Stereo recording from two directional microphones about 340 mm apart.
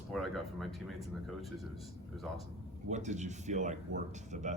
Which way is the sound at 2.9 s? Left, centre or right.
Right.